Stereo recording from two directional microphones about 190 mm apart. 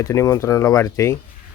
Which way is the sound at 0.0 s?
15° left (ahead or behind).